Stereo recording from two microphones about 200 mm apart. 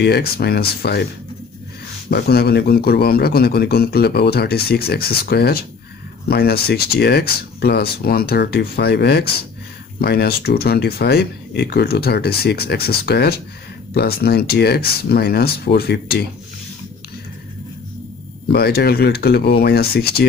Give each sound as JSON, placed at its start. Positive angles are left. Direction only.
{"t": 0.0, "sound": "a man's voice", "side_deg": 55}
{"t": 2.0, "sound": "a man's voice", "side_deg": 55}
{"t": 18.5, "sound": "a man's voice", "side_deg": 55}